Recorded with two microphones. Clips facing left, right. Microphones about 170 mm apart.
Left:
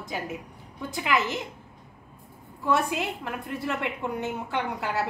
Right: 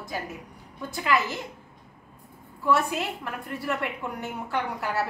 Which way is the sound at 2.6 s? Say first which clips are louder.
Right 1 dB; 20° left (ahead or behind).